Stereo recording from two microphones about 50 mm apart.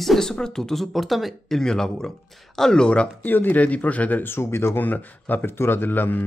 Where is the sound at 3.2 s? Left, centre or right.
Left.